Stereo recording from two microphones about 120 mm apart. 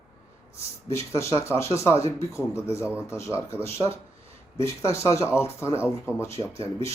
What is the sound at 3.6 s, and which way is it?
Speech, 25° left (ahead or behind).